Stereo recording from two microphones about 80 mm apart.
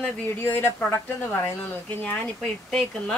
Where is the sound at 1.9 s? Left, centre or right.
Left.